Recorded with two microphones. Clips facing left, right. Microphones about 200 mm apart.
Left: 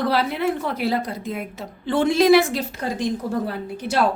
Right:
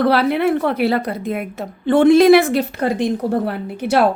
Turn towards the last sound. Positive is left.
turn(degrees=-65)  # may be behind; listen again after turning